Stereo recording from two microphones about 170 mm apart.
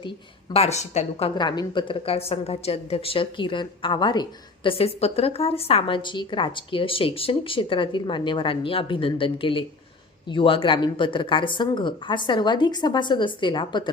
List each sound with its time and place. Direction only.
0.5 s a woman's voice: 40° left (ahead or behind)